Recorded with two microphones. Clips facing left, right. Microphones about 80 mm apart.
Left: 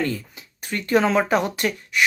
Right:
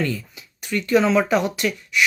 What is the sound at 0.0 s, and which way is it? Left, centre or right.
Speech, left.